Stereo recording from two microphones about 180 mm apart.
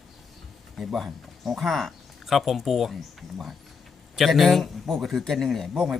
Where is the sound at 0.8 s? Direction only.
Centre (ahead or behind).